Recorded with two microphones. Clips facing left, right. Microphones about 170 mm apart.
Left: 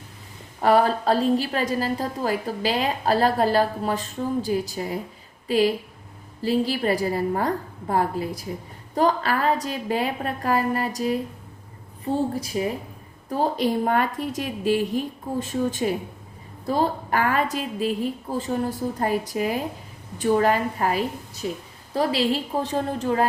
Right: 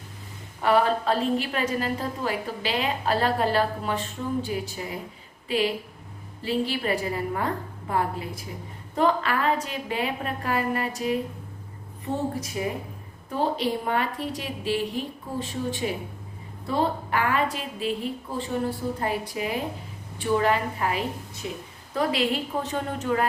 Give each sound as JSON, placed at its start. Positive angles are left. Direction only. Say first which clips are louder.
{"t": 0.6, "sound": "a woman's voice", "louder": "left 3 dB", "side_deg": 40}
{"t": 13.3, "sound": "a woman's voice", "louder": "left 3 dB", "side_deg": 45}